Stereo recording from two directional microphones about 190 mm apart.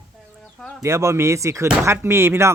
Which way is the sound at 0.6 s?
5° left (ahead or behind).